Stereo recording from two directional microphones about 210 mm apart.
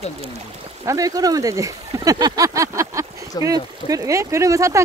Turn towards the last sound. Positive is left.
turn(degrees=-15)  # may be behind; listen again after turning